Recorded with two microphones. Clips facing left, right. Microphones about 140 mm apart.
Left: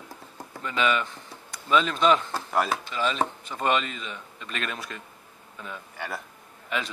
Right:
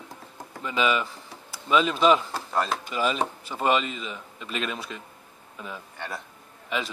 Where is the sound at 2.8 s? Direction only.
10° right (ahead or behind).